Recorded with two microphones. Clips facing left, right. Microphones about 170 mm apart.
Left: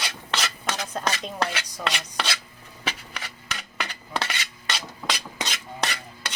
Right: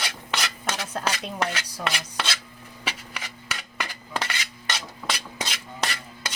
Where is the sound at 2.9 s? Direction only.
10° right (ahead or behind).